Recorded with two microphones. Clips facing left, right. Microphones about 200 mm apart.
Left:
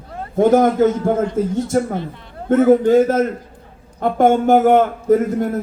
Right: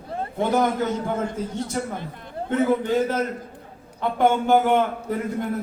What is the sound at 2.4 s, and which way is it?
A man's voice, 50° left (ahead or behind).